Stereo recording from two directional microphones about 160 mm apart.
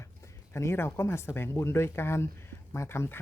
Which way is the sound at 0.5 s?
15° left (ahead or behind).